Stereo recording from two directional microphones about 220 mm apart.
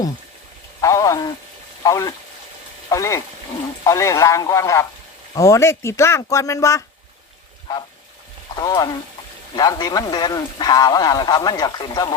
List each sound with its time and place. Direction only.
0.8 s speech: 15° left (ahead or behind)
8.5 s speech: 15° left (ahead or behind)